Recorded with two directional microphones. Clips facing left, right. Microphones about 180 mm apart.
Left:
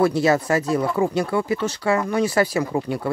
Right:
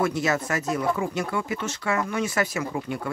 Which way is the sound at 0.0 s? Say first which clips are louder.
Left 6 dB; 30° left (ahead or behind).